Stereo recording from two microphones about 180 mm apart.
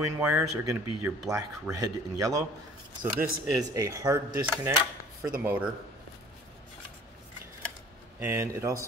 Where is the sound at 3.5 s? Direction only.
20° right (ahead or behind).